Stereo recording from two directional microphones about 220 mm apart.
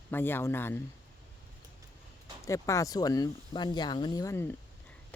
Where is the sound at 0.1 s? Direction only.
10° left (ahead or behind).